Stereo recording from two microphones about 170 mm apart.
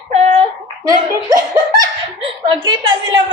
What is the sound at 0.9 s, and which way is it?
Laughter, 20° right (ahead or behind).